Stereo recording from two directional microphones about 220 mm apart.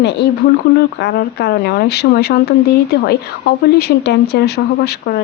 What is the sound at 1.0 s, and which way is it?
Speech, 45° left (ahead or behind).